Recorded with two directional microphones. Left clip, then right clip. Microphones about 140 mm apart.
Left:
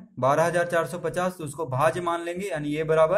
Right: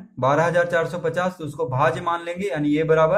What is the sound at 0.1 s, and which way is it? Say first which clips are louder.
A man's voice: right 3 dB; 25° left (ahead or behind).